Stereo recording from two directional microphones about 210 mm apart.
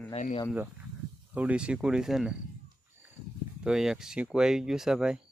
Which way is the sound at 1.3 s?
5° right (ahead or behind).